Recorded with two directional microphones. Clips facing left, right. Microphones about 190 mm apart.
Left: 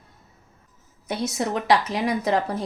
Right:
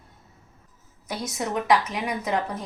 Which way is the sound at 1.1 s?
30° left (ahead or behind).